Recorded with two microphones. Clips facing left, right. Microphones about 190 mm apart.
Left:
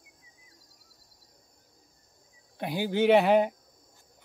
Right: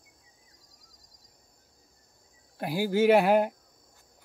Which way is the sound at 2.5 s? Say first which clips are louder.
Right 2 dB; 5° right (ahead or behind).